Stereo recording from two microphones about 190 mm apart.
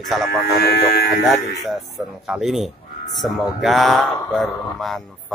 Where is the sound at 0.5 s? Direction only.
55° left (ahead or behind).